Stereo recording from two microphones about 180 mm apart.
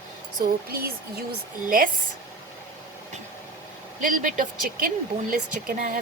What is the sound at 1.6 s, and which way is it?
Speech, 50° right (ahead or behind).